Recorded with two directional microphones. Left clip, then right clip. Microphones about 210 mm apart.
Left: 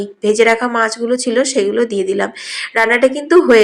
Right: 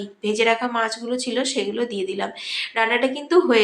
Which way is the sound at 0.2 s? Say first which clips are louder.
Left 8 dB; 25° left (ahead or behind).